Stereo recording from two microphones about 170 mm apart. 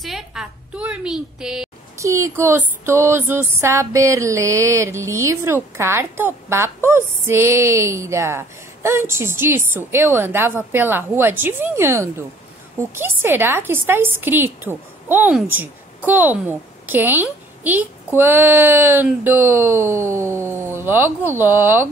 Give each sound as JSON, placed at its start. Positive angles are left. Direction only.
{"t": 0.0, "sound": "a woman's voice", "side_deg": -5}
{"t": 2.0, "sound": "a woman's voice", "side_deg": -15}